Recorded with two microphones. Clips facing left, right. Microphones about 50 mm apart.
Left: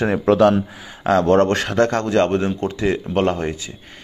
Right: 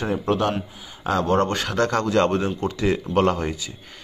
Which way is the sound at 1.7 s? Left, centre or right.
Left.